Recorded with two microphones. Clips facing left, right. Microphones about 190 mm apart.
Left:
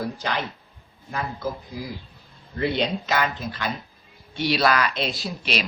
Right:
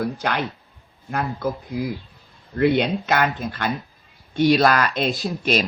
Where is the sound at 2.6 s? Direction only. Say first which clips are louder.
Right 6 dB; 55° right (ahead or behind).